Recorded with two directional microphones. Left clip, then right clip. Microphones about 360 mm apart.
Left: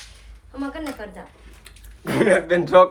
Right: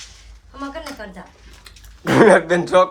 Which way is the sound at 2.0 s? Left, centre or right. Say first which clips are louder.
Right 6 dB; right.